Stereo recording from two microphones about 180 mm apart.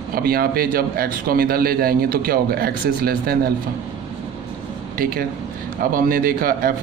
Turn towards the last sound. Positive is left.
turn(degrees=-50)  # may be behind; listen again after turning